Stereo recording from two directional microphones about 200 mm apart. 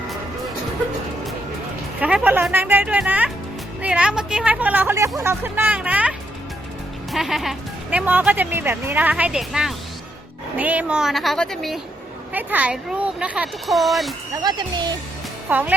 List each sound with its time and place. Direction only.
2.0 s speech: 5° right (ahead or behind)
12.3 s speech: 10° right (ahead or behind)
14.4 s speech: 20° right (ahead or behind)
15.4 s speech: 10° right (ahead or behind)